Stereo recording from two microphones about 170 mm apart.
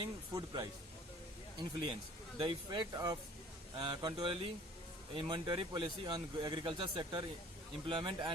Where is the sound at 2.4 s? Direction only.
25° right (ahead or behind).